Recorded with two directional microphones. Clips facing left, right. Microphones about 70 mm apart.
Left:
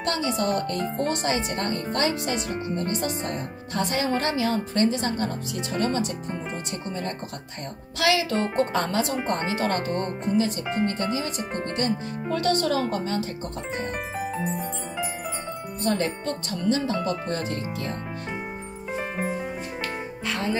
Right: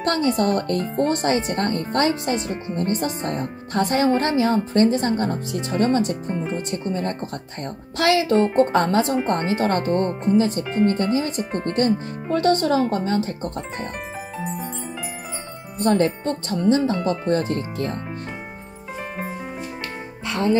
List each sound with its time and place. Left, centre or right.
0.0 s speech: right
14.1 s glockenspiel: centre
15.8 s speech: right